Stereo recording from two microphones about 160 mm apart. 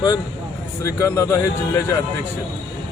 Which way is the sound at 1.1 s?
20° left (ahead or behind).